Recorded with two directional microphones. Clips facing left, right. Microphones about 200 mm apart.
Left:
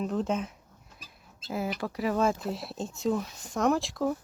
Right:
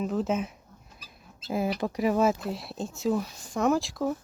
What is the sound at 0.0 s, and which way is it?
Speech, 5° right (ahead or behind).